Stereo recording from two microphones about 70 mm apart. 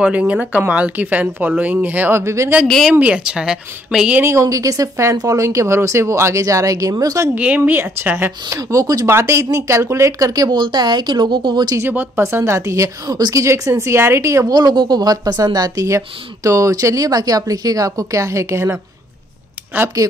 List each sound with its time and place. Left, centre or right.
0.0 s speech: centre
2.1 s a woman's voice: right
2.9 s speech: centre
4.2 s a woman's voice: right
7.3 s speech: right
8.5 s a woman's voice: right
9.0 s a woman's voice: right
12.2 s a woman's voice: right
14.5 s a woman's voice: right
19.7 s speech: right